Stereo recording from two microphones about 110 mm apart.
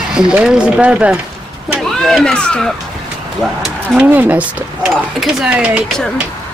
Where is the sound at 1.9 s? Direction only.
5° left (ahead or behind).